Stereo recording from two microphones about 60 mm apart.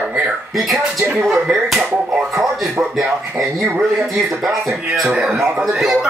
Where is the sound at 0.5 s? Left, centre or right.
Centre.